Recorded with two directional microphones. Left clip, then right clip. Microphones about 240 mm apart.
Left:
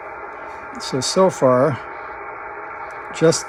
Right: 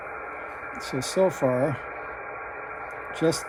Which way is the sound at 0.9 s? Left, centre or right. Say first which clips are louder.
Left 9 dB; left.